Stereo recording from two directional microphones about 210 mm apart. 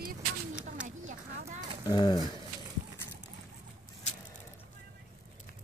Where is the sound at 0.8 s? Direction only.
35° right (ahead or behind).